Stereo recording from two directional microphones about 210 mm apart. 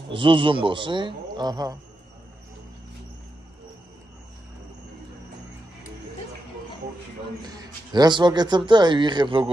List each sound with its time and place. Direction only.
0.1 s speech: 25° right (ahead or behind)
7.4 s speech: 20° right (ahead or behind)